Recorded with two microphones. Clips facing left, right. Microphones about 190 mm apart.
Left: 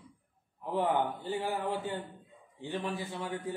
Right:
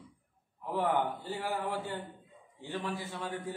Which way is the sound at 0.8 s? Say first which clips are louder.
Left 1 dB; 20° left (ahead or behind).